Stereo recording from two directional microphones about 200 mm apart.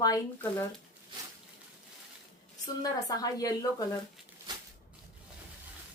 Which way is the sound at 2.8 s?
15° left (ahead or behind).